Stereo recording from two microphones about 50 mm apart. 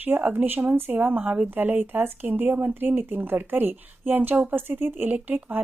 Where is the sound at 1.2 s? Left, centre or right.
Right.